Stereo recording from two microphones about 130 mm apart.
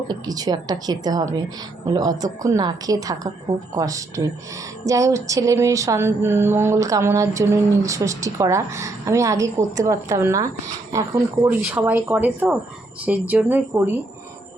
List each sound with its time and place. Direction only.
0.1 s speech: 30° right (ahead or behind)
1.9 s a sound: 30° right (ahead or behind)
11.4 s speech: 10° right (ahead or behind)